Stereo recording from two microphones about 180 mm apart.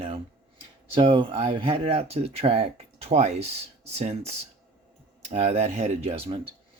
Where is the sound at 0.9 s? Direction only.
30° right (ahead or behind).